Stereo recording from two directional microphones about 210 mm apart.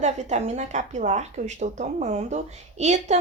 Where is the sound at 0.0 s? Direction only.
35° right (ahead or behind).